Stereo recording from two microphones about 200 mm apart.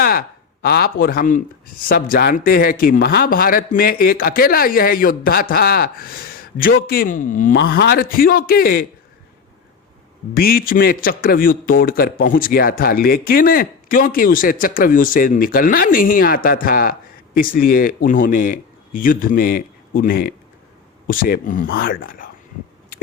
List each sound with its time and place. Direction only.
0.0 s a man's voice: 50° left (ahead or behind)
7.5 s a man's voice: 55° left (ahead or behind)
10.3 s a man's voice: 50° left (ahead or behind)